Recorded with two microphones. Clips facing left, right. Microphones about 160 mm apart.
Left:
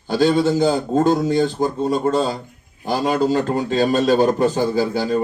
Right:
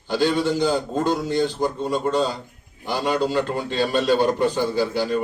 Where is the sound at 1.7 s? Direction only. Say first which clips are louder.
Left 4 dB; 45° left (ahead or behind).